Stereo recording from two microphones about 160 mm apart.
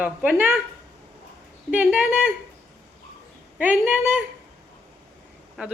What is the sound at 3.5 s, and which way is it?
Speech, 10° right (ahead or behind).